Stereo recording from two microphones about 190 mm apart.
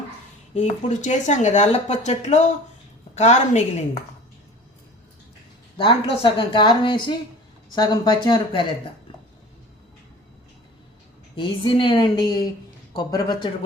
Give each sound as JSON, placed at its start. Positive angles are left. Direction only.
{"t": 0.5, "sound": "speech", "side_deg": 40}
{"t": 5.7, "sound": "a woman's voice", "side_deg": 25}
{"t": 11.3, "sound": "a woman's voice", "side_deg": 25}